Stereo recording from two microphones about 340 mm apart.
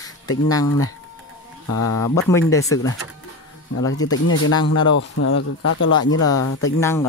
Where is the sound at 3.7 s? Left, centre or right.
Left.